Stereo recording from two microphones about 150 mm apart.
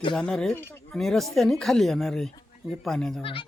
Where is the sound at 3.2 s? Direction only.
35° left (ahead or behind).